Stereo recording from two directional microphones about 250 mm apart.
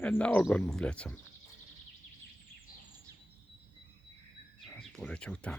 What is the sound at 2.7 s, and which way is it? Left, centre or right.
Bird vocalization, left.